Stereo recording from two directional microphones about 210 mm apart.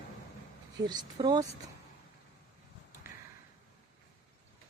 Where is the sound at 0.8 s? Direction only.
20° right (ahead or behind).